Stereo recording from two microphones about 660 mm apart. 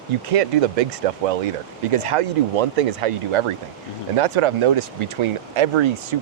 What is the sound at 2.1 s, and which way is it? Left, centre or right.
Speech, right.